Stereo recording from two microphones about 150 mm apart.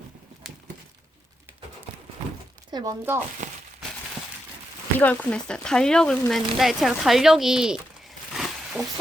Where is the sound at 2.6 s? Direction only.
25° right (ahead or behind).